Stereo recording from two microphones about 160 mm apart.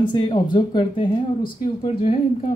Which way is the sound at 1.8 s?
40° left (ahead or behind).